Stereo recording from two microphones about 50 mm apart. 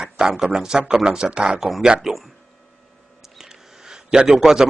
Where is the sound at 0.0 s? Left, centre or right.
Centre.